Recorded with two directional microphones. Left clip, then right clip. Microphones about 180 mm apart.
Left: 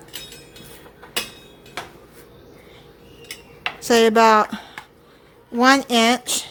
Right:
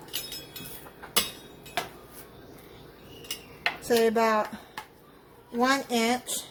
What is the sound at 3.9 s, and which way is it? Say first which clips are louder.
Speech: left 10 dB; 45° left (ahead or behind).